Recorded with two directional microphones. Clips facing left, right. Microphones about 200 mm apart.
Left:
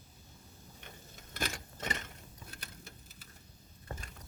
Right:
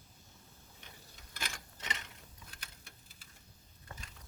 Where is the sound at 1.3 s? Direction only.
50° left (ahead or behind).